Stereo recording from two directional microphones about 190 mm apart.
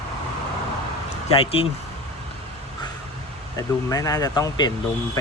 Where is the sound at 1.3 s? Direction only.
30° left (ahead or behind).